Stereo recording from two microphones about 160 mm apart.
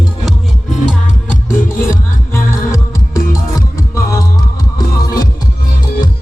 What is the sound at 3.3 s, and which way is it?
Music, 20° left (ahead or behind).